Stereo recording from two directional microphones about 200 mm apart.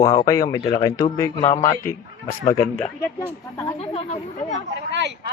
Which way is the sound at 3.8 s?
30° left (ahead or behind).